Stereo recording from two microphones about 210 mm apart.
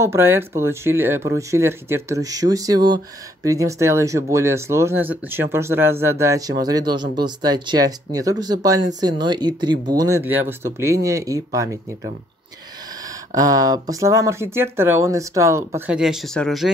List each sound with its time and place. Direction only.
0.0 s speech: 10° right (ahead or behind)
13.3 s speech: 15° right (ahead or behind)
16.0 s speech: centre (ahead or behind)